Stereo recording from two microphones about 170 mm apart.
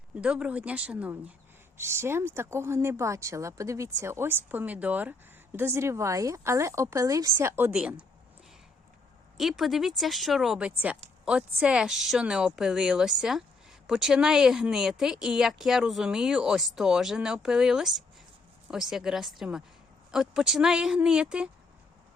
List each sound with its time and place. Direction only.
0.1 s speech: 5° right (ahead or behind)
9.4 s speech: centre (ahead or behind)